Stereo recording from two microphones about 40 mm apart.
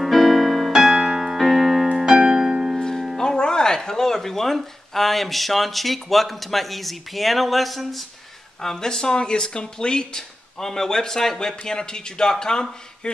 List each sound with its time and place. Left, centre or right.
0.0 s keyboard: centre
2.0 s music: centre
3.2 s speech: centre
8.5 s speech: centre